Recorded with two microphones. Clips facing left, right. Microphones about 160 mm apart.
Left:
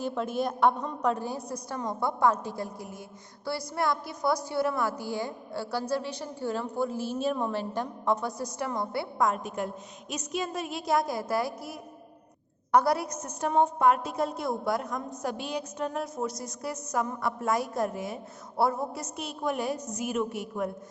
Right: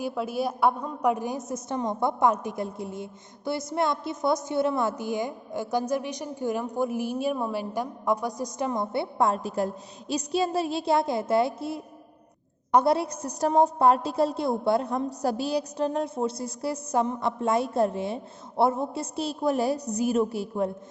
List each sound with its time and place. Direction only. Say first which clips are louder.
0.0 s a woman's voice: right 1 dB; 5° right (ahead or behind); by 20.7 s 30° right (ahead or behind)